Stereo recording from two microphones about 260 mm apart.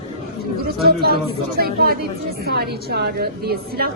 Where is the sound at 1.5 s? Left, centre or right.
Right.